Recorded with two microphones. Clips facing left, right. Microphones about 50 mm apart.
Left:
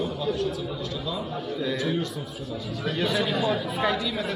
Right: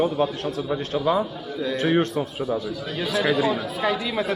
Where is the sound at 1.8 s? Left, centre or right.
Right.